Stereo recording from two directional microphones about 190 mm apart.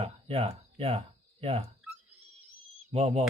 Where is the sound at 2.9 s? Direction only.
30° right (ahead or behind).